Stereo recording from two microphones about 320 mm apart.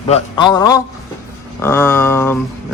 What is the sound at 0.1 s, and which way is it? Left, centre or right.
Speech, centre.